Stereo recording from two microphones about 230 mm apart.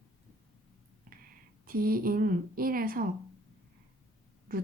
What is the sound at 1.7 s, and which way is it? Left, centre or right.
Speech, right.